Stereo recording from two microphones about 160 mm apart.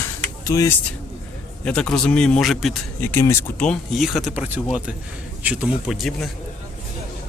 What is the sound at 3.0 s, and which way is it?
Speech, 15° left (ahead or behind).